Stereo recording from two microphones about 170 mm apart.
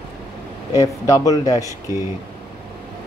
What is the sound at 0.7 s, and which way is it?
Speech, 20° left (ahead or behind).